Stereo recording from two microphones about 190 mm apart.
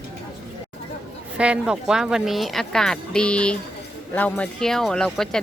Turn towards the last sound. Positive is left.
turn(degrees=0)  # may be behind; listen again after turning